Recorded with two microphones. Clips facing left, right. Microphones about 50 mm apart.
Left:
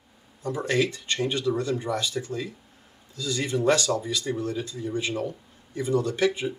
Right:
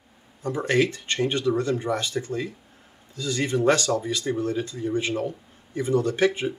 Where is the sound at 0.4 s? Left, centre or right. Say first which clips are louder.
Right 2 dB; right.